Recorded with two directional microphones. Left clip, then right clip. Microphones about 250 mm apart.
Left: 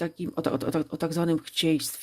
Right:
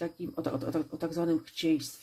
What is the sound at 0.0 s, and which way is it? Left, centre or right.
Speech, left.